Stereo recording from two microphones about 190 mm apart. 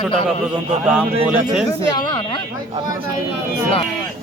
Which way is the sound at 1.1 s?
30° right (ahead or behind).